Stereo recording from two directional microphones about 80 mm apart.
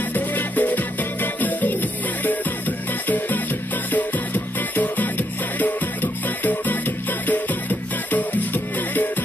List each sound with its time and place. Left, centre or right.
0.1 s music: left